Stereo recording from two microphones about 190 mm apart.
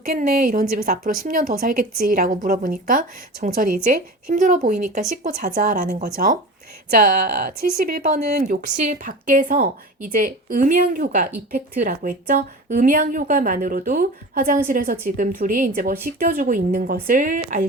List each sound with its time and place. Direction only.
0.1 s a woman's voice: 50° right (ahead or behind)